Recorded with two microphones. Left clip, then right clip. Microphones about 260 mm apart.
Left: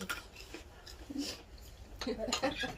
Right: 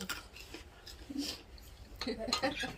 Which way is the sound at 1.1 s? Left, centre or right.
Centre.